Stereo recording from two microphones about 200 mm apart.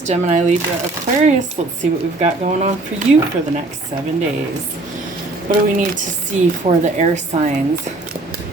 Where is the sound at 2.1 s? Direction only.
35° right (ahead or behind).